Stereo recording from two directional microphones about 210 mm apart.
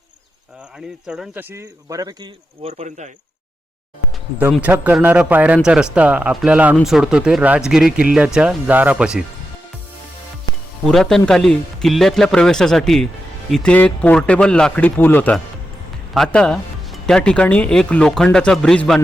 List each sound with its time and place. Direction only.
1.0 s speech: 5° right (ahead or behind); by 3.1 s 30° right (ahead or behind)
4.5 s speech: 5° right (ahead or behind)
10.5 s music: 20° left (ahead or behind)
10.8 s speech: centre (ahead or behind)